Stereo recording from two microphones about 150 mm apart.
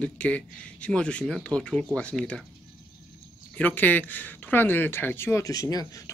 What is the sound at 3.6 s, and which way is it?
Speech, 10° left (ahead or behind).